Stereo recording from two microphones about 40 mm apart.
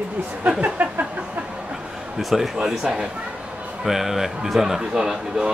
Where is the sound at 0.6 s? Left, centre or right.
Right.